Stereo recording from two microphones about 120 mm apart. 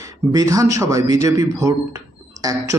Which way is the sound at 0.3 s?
25° right (ahead or behind).